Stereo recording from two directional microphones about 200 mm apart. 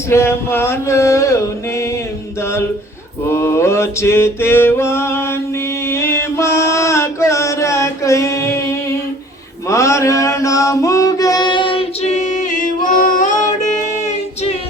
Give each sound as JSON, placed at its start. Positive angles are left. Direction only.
{"t": 0.1, "sound": "a sound", "side_deg": 10}
{"t": 3.2, "sound": "mantra", "side_deg": 15}
{"t": 13.0, "sound": "music", "side_deg": 40}